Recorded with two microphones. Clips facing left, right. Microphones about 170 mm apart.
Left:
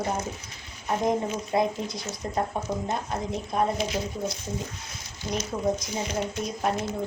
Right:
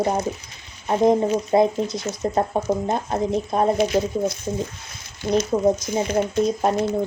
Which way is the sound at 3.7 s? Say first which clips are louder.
Right 9 dB; 60° right (ahead or behind).